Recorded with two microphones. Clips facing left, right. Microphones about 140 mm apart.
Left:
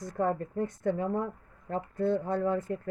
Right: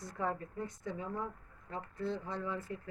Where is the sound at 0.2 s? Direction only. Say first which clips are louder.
Left 8 dB; 50° left (ahead or behind).